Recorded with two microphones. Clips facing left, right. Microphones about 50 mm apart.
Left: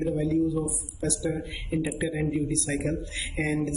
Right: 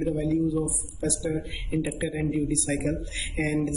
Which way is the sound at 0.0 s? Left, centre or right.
Centre.